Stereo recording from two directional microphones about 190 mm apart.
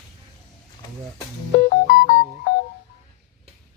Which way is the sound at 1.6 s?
45° left (ahead or behind).